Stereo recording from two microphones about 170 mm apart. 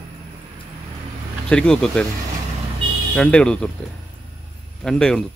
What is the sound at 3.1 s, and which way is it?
Speech, 5° left (ahead or behind).